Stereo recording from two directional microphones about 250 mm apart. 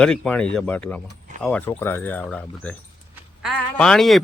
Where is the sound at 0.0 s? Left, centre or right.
Centre.